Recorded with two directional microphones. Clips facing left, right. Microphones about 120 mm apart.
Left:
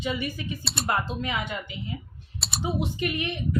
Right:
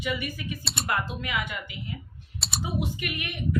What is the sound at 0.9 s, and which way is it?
A woman's voice, 30° left (ahead or behind).